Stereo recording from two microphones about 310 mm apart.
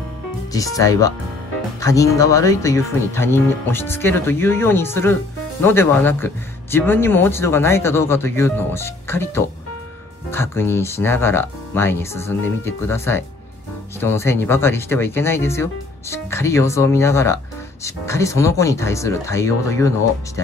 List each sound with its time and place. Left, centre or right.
0.5 s speech: centre